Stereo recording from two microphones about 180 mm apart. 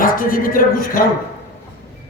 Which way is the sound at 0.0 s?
50° left (ahead or behind).